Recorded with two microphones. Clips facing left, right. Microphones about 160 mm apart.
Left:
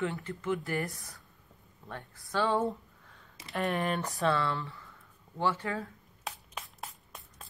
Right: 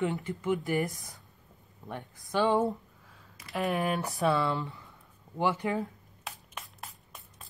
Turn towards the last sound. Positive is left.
turn(degrees=0)  # may be behind; listen again after turning